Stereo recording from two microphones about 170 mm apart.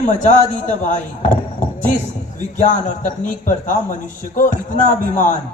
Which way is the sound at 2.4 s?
45° left (ahead or behind).